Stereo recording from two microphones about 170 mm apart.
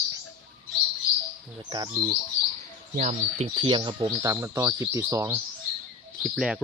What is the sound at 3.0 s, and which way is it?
Speech, 45° right (ahead or behind).